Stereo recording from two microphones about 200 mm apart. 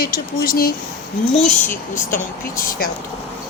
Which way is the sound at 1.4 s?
10° left (ahead or behind).